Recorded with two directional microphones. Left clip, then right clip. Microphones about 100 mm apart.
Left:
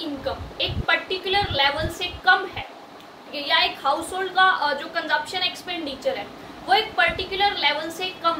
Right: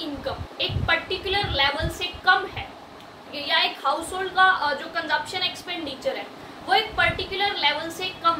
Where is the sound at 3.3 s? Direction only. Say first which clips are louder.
Left 2 dB; 25° left (ahead or behind).